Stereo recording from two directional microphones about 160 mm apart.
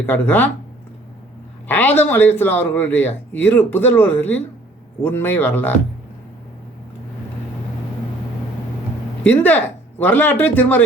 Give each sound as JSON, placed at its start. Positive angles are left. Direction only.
{"t": 0.0, "sound": "speech", "side_deg": 10}
{"t": 1.6, "sound": "speech", "side_deg": 10}
{"t": 9.2, "sound": "speech", "side_deg": 10}